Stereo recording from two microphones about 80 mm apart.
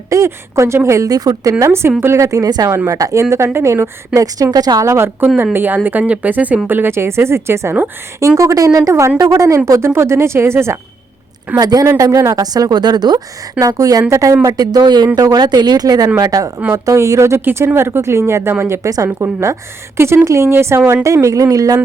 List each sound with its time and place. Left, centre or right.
0.1 s a woman's voice: right
4.9 s a woman's voice: right
8.4 s a woman's voice: right
11.5 s a woman's voice: right
14.4 s a woman's voice: right